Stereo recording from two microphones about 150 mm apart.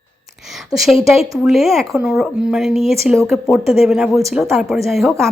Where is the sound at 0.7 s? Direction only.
Centre (ahead or behind).